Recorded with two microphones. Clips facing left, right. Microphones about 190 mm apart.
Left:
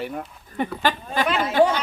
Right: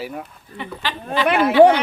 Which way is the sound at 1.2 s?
65° right (ahead or behind).